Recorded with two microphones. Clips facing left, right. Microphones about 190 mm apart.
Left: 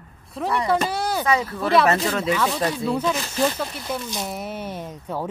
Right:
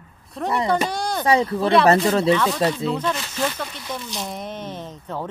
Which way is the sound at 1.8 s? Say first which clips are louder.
Right 4 dB; 30° right (ahead or behind).